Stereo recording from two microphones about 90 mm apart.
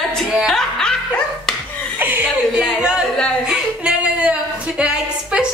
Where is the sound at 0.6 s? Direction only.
5° left (ahead or behind).